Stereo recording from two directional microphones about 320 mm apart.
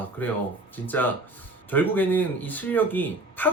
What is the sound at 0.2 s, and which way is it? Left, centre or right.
Speech, centre.